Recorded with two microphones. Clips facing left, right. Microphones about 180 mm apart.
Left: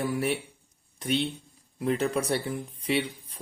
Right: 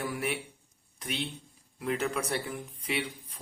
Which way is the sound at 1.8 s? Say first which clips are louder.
Left 5 dB; 35° left (ahead or behind).